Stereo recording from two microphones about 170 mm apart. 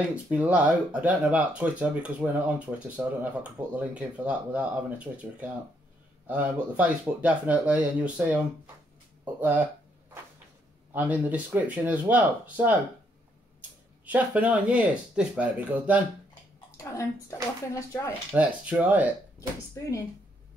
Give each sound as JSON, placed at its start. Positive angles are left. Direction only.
{"t": 0.1, "sound": "speech", "side_deg": -10}
{"t": 10.9, "sound": "speech", "side_deg": -10}
{"t": 14.0, "sound": "speech", "side_deg": -10}
{"t": 16.7, "sound": "speech", "side_deg": 20}
{"t": 18.3, "sound": "speech", "side_deg": -10}